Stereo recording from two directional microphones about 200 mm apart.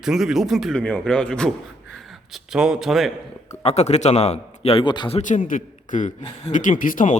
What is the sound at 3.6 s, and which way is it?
A man's voice, 35° left (ahead or behind).